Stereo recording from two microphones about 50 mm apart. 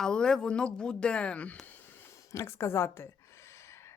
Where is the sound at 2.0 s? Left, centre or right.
Left.